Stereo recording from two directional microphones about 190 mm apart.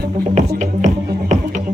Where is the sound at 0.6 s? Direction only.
40° right (ahead or behind).